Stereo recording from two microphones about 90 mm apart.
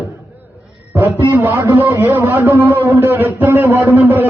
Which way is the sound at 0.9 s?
20° right (ahead or behind).